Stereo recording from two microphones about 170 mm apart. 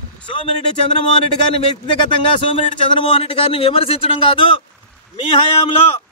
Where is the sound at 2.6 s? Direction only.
35° left (ahead or behind).